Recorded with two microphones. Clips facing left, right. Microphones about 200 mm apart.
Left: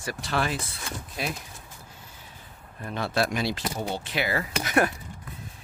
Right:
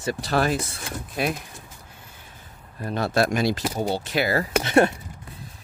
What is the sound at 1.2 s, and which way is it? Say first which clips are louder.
Speech: right 7 dB; 55° right (ahead or behind).